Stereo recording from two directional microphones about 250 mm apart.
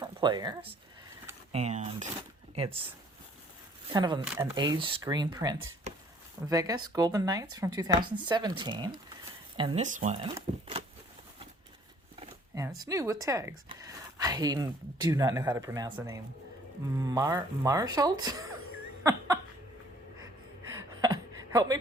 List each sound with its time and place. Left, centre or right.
0.0 s a sound: centre
1.5 s speech: right
4.2 s speech: centre; by 10.2 s right
10.2 s speech: centre
12.2 s speech: centre
20.7 s a sound: centre